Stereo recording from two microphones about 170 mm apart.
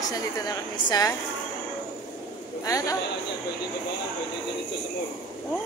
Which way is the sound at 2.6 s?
20° left (ahead or behind).